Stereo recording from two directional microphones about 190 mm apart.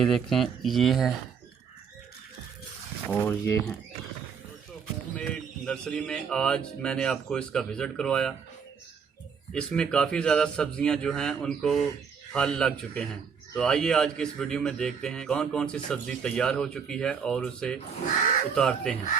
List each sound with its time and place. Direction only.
0.0 s a man's voice: centre (ahead or behind)
3.1 s speech: 10° left (ahead or behind)
5.1 s a man's voice: 5° left (ahead or behind)
9.5 s a man's voice: 5° left (ahead or behind)